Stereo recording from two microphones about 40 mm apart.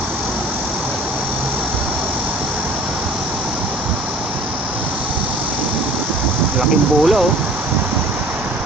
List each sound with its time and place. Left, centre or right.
6.6 s speech: centre